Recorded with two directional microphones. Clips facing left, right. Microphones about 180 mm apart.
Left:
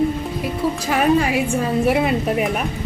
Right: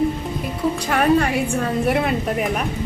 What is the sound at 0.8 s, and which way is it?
A woman's voice, 5° left (ahead or behind).